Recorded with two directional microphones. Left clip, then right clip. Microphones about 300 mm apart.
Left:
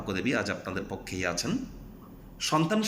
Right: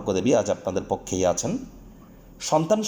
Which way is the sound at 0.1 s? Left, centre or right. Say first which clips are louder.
Right 9 dB; right.